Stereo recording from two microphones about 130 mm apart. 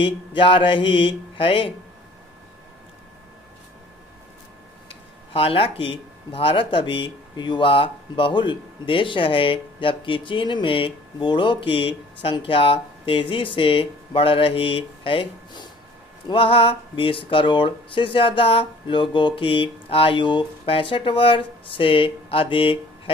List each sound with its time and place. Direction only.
0.0 s mantra: 40° left (ahead or behind)
4.9 s speech: 45° left (ahead or behind)